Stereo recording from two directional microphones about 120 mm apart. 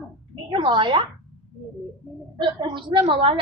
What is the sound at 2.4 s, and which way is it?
A woman's voice, 40° right (ahead or behind).